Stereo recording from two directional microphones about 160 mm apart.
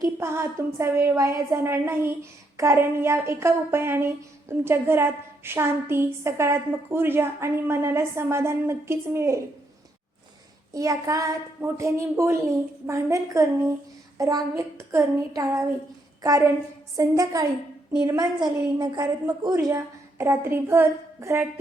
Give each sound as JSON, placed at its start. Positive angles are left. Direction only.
{"t": 0.0, "sound": "speech", "side_deg": -15}
{"t": 10.8, "sound": "a woman's voice", "side_deg": -20}